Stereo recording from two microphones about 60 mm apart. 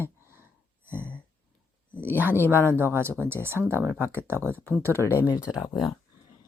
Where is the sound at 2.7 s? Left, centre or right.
Right.